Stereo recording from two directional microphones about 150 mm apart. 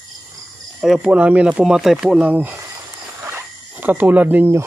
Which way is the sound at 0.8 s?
5° right (ahead or behind).